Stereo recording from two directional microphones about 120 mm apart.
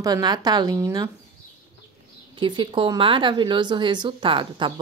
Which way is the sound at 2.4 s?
40° right (ahead or behind).